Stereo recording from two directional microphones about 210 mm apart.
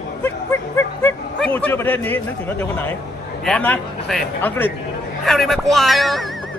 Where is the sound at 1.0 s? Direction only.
5° left (ahead or behind).